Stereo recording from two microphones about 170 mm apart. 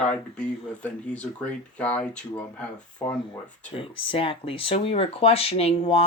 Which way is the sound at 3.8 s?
30° left (ahead or behind).